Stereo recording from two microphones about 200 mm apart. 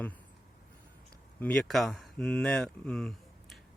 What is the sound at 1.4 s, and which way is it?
Speech, 5° left (ahead or behind).